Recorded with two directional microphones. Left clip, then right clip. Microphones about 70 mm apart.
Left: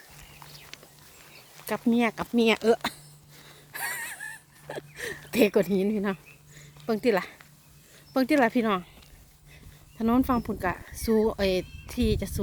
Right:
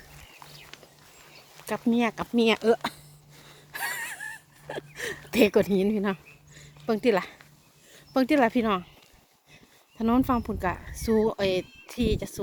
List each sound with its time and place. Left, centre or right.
0.3 s a sound: centre
1.5 s a sound: centre
1.9 s speech: centre
3.7 s wheeze: centre
4.1 s wheeze: right
4.7 s a sound: right
7.1 s speech: centre
8.4 s speech: centre
10.0 s speech: centre